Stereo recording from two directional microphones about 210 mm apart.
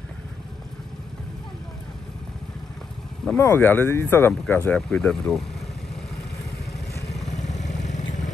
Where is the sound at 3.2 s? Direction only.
10° left (ahead or behind).